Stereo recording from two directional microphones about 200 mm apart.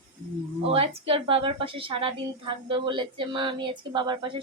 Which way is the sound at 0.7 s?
30° right (ahead or behind).